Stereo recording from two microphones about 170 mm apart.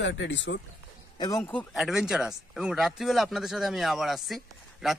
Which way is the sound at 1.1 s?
25° left (ahead or behind).